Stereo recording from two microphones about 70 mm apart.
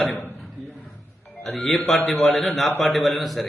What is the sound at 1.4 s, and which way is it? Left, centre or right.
A man's voice, centre.